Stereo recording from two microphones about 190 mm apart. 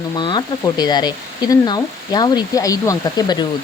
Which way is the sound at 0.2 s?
25° left (ahead or behind).